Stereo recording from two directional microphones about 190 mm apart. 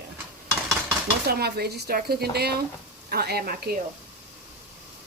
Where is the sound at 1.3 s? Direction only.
55° right (ahead or behind).